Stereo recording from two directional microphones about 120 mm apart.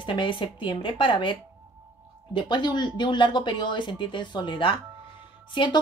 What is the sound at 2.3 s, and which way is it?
Speech, 40° left (ahead or behind).